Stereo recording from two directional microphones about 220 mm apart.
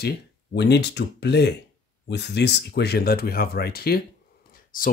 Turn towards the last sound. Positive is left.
turn(degrees=40)  # may be behind; listen again after turning